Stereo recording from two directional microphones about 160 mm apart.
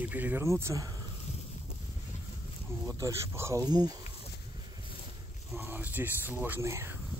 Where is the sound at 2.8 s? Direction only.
20° right (ahead or behind).